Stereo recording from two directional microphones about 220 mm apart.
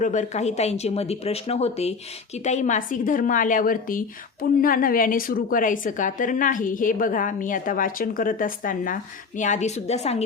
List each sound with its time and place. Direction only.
0.0 s a woman's voice: 35° left (ahead or behind)